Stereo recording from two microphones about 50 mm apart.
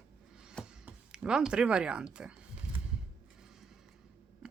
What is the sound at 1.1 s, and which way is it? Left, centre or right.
Speech, centre.